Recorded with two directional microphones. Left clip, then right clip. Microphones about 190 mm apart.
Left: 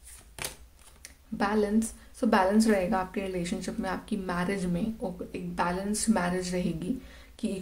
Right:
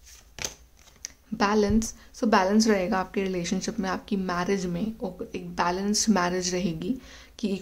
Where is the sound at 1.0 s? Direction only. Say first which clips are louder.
Right 5 dB; 40° right (ahead or behind).